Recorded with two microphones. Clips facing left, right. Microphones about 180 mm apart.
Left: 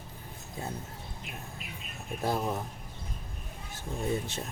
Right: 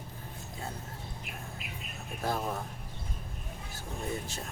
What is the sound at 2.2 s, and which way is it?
Speech, 20° left (ahead or behind).